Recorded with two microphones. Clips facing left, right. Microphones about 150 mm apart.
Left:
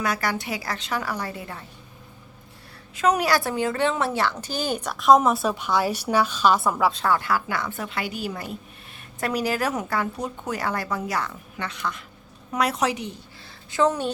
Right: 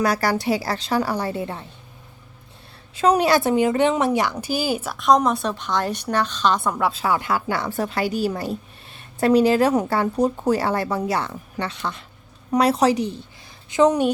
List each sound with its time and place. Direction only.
0.0 s speech: 35° right (ahead or behind)
2.9 s a woman's voice: 30° right (ahead or behind); by 7.1 s centre (ahead or behind)
7.1 s speech: 20° right (ahead or behind)
13.7 s a woman's voice: 20° right (ahead or behind)